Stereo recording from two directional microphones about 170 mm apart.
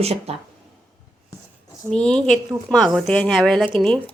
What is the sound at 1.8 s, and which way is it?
Speech, 5° left (ahead or behind).